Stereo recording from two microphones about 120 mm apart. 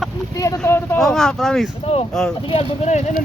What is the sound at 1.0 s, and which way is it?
Speech, 5° left (ahead or behind).